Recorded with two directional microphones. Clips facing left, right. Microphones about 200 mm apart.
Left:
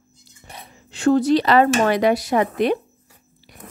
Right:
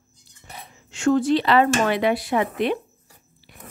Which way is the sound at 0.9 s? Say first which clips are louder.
Left 3 dB; 35° left (ahead or behind).